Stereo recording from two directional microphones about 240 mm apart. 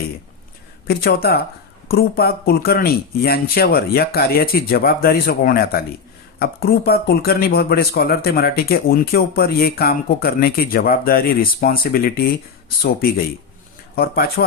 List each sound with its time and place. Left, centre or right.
0.9 s speech: left